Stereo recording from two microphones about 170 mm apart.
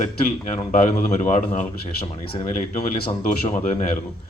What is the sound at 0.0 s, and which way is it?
A man's voice, 45° left (ahead or behind).